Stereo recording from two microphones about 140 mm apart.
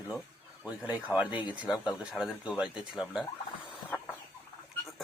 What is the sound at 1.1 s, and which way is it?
Speech, 25° left (ahead or behind).